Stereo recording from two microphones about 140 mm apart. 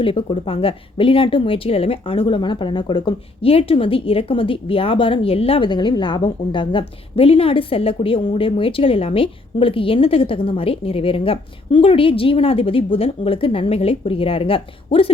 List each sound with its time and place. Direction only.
0.0 s speech: 40° left (ahead or behind)